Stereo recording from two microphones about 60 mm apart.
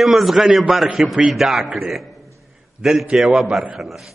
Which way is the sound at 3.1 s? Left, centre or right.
Centre.